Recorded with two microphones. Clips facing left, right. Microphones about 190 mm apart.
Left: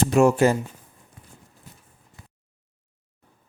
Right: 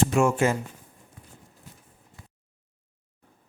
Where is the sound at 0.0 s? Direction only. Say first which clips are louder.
Left 4 dB; 35° left (ahead or behind).